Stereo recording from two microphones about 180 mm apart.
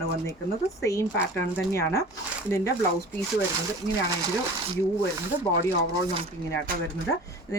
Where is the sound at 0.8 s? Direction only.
15° left (ahead or behind).